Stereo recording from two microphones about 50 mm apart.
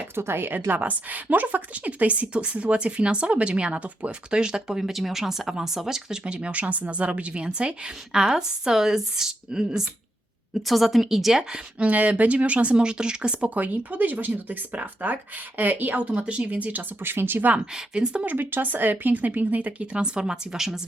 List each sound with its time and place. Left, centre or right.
0.2 s speech: right
0.7 s a woman's voice: right; by 6.1 s centre
6.2 s a woman's voice: right
11.8 s a woman's voice: right
13.5 s speech: right
16.1 s a woman's voice: right
17.0 s speech: right
17.7 s speech: centre
18.3 s speech: right
20.1 s speech: centre